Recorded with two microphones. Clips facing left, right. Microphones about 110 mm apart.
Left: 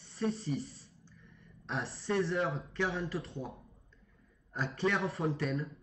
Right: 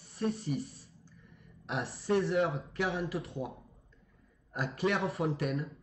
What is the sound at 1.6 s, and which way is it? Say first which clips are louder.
A woman's voice: right 2 dB; centre (ahead or behind).